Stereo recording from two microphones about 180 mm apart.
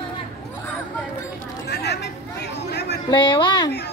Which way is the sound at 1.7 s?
70° left (ahead or behind).